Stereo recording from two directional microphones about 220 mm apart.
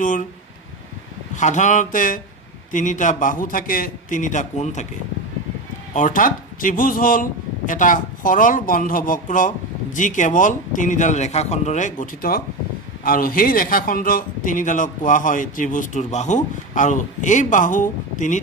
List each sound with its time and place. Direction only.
0.0 s speech: 35° left (ahead or behind)
1.3 s speech: 35° left (ahead or behind)
5.9 s speech: 35° left (ahead or behind)